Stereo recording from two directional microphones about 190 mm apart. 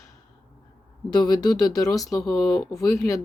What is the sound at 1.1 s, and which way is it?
Speech, 20° left (ahead or behind).